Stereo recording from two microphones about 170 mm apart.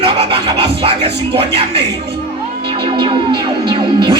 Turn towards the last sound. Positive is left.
turn(degrees=-30)  # may be behind; listen again after turning